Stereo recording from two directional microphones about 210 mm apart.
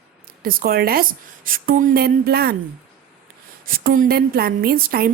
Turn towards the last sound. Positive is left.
turn(degrees=-45)  # may be behind; listen again after turning